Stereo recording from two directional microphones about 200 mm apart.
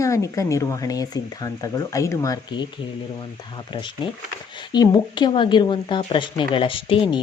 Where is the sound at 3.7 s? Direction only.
25° left (ahead or behind).